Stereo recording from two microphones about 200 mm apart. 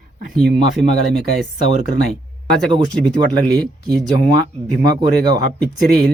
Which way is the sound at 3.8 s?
15° right (ahead or behind).